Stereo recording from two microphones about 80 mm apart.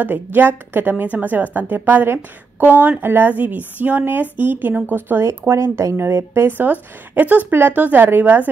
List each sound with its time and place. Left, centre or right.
0.0 s a woman's voice: right
5.5 s a woman's voice: right